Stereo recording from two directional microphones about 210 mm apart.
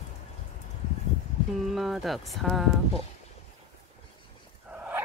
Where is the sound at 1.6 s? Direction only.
Centre (ahead or behind).